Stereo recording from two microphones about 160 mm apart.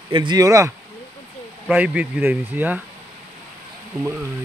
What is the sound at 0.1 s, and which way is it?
Speech, 30° right (ahead or behind).